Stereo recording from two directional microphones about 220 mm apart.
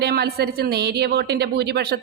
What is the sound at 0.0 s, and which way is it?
A woman's voice, 45° right (ahead or behind).